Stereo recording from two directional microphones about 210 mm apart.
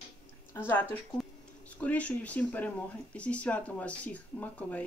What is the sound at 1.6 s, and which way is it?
Speech, 5° left (ahead or behind).